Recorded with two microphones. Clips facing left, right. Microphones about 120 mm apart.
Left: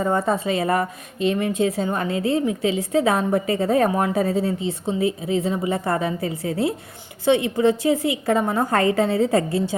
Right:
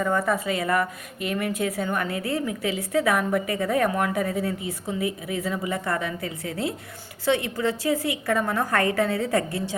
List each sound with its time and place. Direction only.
0.0 s a woman's voice: 30° left (ahead or behind)